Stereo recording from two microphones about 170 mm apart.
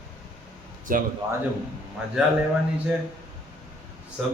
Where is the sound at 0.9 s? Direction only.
55° right (ahead or behind).